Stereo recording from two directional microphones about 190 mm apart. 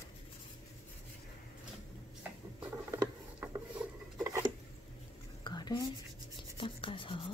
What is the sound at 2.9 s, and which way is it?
Patter, 15° right (ahead or behind).